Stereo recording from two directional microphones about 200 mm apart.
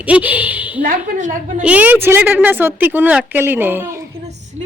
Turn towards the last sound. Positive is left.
turn(degrees=-10)  # may be behind; listen again after turning